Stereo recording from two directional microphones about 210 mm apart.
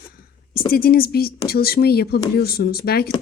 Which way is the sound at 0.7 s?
45° left (ahead or behind).